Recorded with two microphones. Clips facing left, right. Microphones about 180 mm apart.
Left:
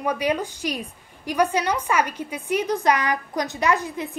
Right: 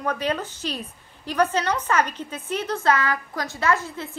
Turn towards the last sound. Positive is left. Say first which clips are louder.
# left 1 dB
turn(degrees=15)  # may be behind; listen again after turning